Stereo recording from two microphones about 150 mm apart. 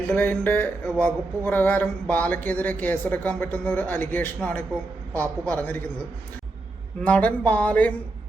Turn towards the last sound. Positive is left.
turn(degrees=10)  # may be behind; listen again after turning